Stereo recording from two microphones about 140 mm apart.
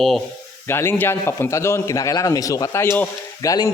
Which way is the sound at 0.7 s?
15° left (ahead or behind).